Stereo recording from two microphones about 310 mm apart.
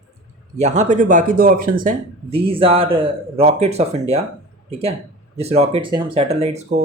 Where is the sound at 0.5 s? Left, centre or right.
Right.